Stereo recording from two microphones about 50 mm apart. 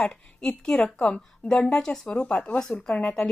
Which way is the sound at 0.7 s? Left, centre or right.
Left.